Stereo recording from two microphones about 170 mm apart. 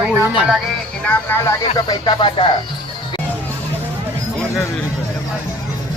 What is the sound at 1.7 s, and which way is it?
Music, 25° left (ahead or behind).